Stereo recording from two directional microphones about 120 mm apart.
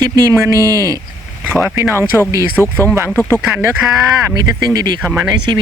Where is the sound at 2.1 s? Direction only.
20° right (ahead or behind).